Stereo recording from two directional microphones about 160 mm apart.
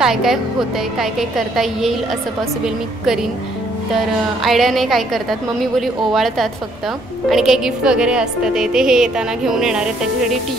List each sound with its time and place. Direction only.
0.0 s a woman's voice: centre (ahead or behind)
1.6 s a woman's voice: centre (ahead or behind)
4.4 s a woman's voice: centre (ahead or behind)